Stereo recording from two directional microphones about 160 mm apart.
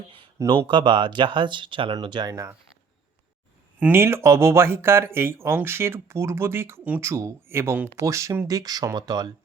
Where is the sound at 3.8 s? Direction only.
15° right (ahead or behind).